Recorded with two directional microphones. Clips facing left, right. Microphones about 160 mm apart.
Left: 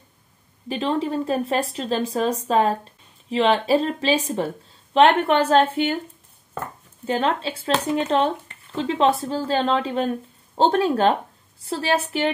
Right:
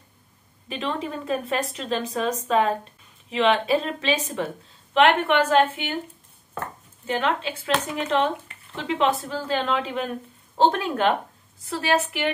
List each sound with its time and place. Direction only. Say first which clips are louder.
0.7 s speech: left 5 dB; 35° left (ahead or behind)
7.1 s speech: left 2 dB; 35° left (ahead or behind)